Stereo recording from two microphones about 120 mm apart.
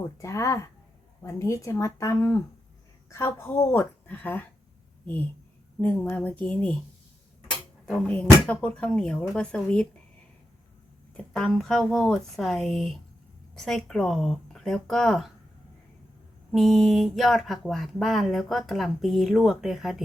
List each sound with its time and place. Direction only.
0.2 s a woman's voice: 25° left (ahead or behind)
5.8 s speech: 15° left (ahead or behind)
7.9 s speech: 10° left (ahead or behind)
11.2 s speech: 10° left (ahead or behind)
16.5 s speech: centre (ahead or behind)